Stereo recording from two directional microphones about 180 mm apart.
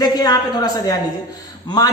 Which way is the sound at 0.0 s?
20° left (ahead or behind).